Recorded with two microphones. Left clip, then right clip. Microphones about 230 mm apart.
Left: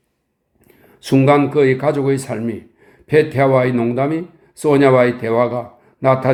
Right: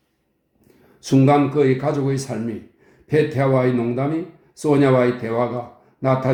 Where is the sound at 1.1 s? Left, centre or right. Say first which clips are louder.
Left 3 dB; left.